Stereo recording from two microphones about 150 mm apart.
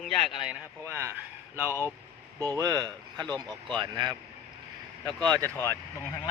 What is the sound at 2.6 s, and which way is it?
Speech, 25° right (ahead or behind).